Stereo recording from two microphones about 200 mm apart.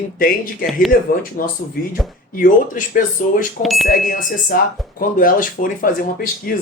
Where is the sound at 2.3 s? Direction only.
40° left (ahead or behind).